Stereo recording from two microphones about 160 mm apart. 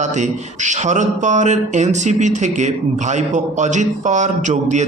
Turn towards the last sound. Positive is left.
turn(degrees=-45)  # may be behind; listen again after turning